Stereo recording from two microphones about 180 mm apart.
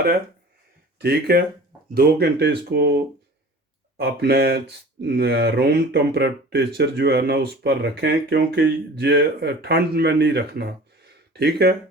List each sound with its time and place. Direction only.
1.0 s speech: 60° right (ahead or behind)